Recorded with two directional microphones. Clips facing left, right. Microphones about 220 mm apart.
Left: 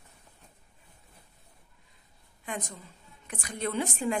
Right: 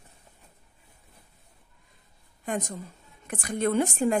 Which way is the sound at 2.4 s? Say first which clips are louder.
Right 7 dB; 45° right (ahead or behind).